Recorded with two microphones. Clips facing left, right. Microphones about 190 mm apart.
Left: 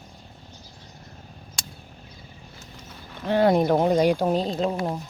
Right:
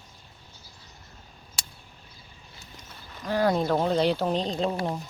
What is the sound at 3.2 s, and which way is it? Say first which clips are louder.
Speech: left 5 dB; 25° left (ahead or behind).